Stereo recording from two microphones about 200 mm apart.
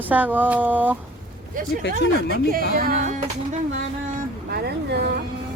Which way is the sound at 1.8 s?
55° left (ahead or behind).